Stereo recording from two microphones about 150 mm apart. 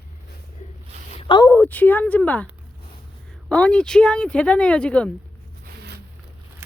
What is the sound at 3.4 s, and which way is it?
Speech, 5° left (ahead or behind).